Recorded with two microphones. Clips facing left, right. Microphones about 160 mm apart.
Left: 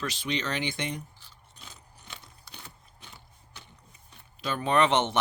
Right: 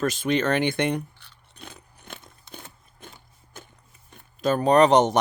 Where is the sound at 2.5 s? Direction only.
50° right (ahead or behind).